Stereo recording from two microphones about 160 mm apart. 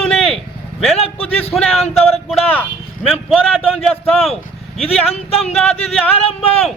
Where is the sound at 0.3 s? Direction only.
Centre (ahead or behind).